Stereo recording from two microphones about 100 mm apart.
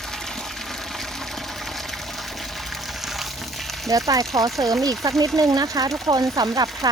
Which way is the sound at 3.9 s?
35° right (ahead or behind).